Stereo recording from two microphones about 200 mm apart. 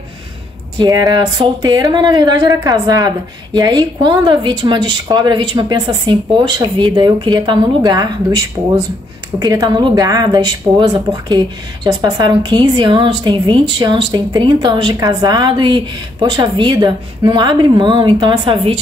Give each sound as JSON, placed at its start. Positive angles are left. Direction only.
{"t": 0.7, "sound": "a woman's voice", "side_deg": -20}